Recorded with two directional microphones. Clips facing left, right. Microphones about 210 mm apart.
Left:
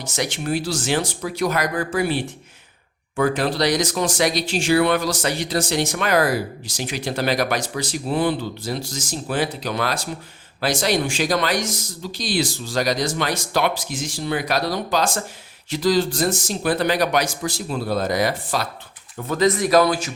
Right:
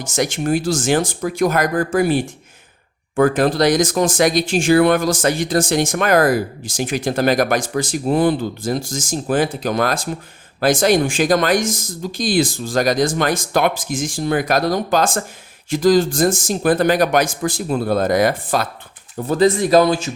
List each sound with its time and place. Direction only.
0.0 s speech: 45° right (ahead or behind)
19.1 s speech: 30° right (ahead or behind)